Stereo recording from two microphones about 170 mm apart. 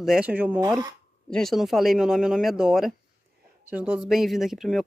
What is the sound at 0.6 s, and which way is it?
Speech, 20° right (ahead or behind).